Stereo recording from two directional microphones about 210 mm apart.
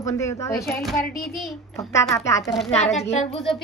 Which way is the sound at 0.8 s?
Centre (ahead or behind).